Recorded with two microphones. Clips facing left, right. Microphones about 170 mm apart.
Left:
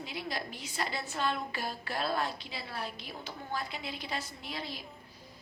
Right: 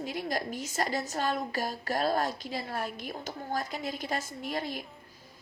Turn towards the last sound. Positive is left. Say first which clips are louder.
# right 7 dB
turn(degrees=-50)  # may be behind; listen again after turning